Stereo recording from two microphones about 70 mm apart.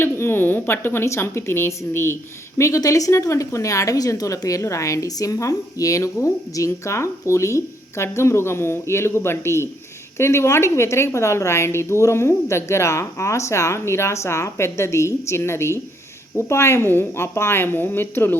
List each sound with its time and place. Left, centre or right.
0.0 s a woman's voice: left